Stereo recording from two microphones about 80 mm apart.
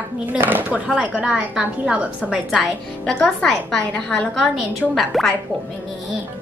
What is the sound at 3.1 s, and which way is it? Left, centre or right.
A woman's voice, centre.